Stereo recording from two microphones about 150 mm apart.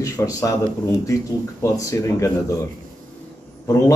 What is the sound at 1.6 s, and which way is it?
Speech, 20° left (ahead or behind).